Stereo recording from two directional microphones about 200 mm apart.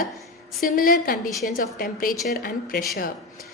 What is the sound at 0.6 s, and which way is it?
A woman's voice, 45° left (ahead or behind).